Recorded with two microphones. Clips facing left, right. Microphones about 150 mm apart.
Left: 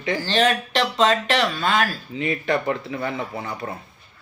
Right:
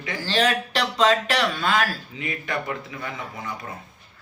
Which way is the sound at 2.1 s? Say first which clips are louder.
Left 8 dB; 30° left (ahead or behind).